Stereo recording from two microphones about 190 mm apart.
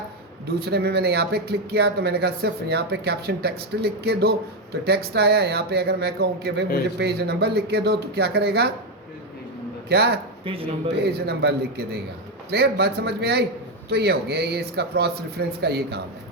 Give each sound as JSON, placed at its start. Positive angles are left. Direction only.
{"t": 0.6, "sound": "speech", "side_deg": -60}
{"t": 9.9, "sound": "speech", "side_deg": -55}
{"t": 10.4, "sound": "speech", "side_deg": -30}
{"t": 10.9, "sound": "speech", "side_deg": -60}